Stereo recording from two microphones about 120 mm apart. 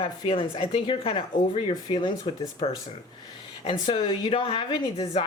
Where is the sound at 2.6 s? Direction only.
55° left (ahead or behind).